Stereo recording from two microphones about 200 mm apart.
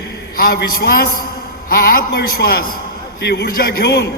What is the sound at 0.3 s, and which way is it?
A man's voice, 50° left (ahead or behind).